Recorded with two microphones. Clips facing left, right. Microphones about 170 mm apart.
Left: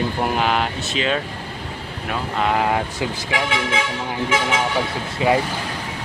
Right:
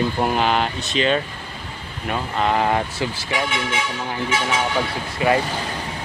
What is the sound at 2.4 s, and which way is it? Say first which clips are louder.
Speech: even; 5° left (ahead or behind).